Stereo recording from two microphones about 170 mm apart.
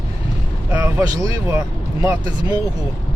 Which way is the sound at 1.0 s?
20° right (ahead or behind).